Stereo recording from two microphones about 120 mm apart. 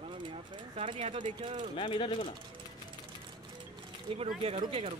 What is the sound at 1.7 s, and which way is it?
Speech, 45° left (ahead or behind).